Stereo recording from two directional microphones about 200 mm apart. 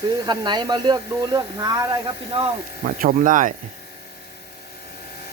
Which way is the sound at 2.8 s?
40° right (ahead or behind).